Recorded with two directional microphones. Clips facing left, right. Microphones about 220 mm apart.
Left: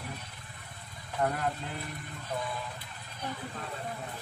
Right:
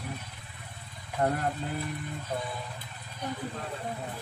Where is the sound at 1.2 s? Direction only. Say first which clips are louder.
Right 3 dB; 35° right (ahead or behind).